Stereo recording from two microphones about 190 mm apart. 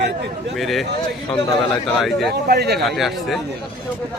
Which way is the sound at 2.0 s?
Centre (ahead or behind).